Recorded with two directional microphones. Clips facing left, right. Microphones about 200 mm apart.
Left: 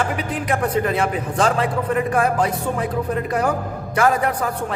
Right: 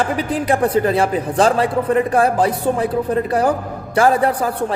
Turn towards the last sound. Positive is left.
turn(degrees=-35)  # may be behind; listen again after turning